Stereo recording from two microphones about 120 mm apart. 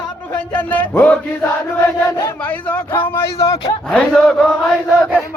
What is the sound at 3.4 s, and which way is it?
Speech, 35° left (ahead or behind).